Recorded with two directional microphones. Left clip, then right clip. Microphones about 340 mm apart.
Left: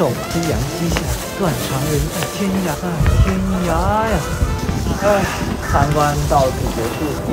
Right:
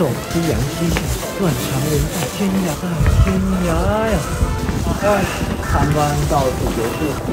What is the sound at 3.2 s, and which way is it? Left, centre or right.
Speech, left.